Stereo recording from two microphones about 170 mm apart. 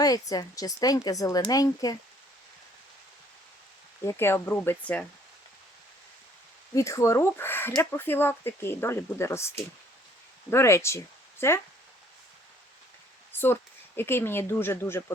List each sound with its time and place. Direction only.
0.0 s speech: 20° left (ahead or behind)
4.0 s speech: 15° left (ahead or behind)
6.7 s speech: 20° left (ahead or behind)
13.4 s speech: 15° left (ahead or behind)